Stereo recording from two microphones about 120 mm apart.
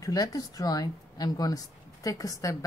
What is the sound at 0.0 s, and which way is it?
A woman's voice, 30° left (ahead or behind).